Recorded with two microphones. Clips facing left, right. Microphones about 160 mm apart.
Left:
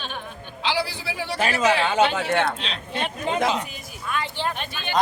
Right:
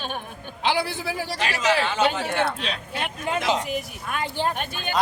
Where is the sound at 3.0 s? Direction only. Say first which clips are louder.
Left 2 dB; 30° left (ahead or behind).